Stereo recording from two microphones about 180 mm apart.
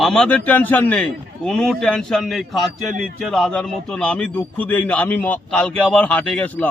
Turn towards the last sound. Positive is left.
turn(degrees=10)  # may be behind; listen again after turning